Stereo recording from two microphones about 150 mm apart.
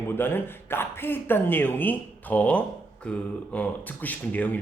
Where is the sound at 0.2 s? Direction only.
15° left (ahead or behind).